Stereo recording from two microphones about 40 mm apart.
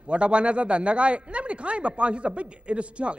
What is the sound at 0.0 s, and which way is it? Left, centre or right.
A man's voice, right.